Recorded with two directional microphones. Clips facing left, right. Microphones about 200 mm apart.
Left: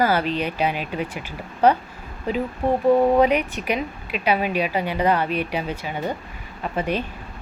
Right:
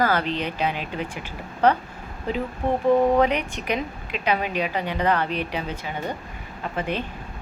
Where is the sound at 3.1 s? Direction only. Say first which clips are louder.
Left 3 dB; 10° left (ahead or behind).